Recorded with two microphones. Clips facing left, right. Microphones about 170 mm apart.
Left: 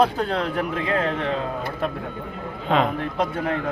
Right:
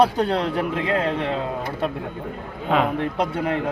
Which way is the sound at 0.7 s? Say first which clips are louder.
Right 1 dB; 20° right (ahead or behind).